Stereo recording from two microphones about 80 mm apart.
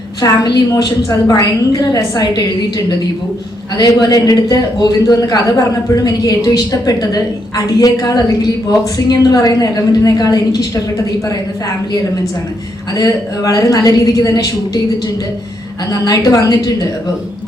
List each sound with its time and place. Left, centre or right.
0.2 s a woman's voice: left
1.3 s a woman's voice: left
12.9 s a woman's voice: left
15.9 s a woman's voice: left